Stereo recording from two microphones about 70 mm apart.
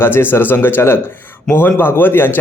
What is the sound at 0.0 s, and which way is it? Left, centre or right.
Speech, left.